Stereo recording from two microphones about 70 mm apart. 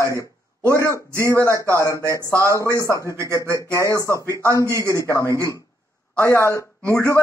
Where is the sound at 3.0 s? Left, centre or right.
Left.